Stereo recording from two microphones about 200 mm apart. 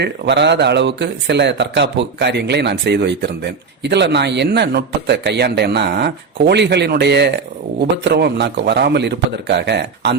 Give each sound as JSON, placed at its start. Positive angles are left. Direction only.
{"t": 0.0, "sound": "speech", "side_deg": -60}